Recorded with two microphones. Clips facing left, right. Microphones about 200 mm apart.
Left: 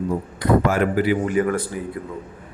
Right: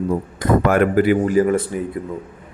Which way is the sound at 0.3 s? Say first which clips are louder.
Right 2 dB; 50° right (ahead or behind).